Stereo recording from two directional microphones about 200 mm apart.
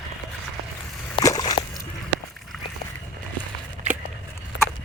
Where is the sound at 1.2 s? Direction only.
15° left (ahead or behind).